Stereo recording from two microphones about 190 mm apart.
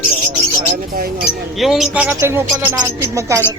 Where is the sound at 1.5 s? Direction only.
Centre (ahead or behind).